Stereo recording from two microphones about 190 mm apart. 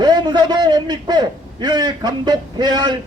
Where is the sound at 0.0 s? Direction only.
20° right (ahead or behind).